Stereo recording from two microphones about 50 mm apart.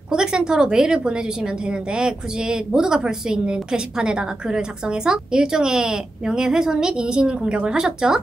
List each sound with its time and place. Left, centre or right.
0.1 s a woman's voice: centre